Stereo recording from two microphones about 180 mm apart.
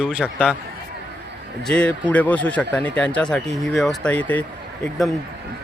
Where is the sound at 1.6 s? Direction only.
5° left (ahead or behind).